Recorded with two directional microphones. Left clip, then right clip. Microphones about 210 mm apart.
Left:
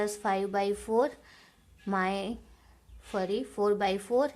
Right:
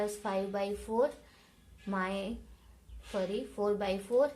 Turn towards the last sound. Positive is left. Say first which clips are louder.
# left 2 dB
turn(degrees=55)  # may be behind; listen again after turning